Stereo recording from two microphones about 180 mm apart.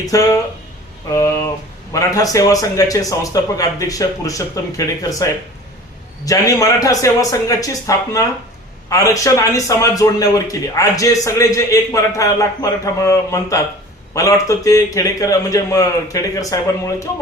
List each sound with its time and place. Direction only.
0.0 s a man's voice: 20° left (ahead or behind)
1.1 s a sound: 15° left (ahead or behind)
1.9 s a man's voice: 20° left (ahead or behind)